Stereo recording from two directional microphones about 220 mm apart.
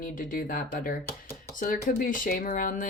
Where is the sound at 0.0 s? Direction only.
40° left (ahead or behind).